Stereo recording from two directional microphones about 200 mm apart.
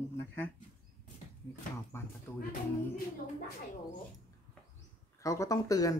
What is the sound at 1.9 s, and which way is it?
Speech, 15° left (ahead or behind).